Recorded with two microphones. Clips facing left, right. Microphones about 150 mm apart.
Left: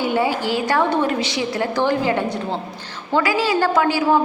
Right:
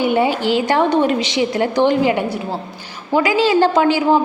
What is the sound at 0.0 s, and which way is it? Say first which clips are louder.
A woman's voice: right 4 dB; 20° right (ahead or behind).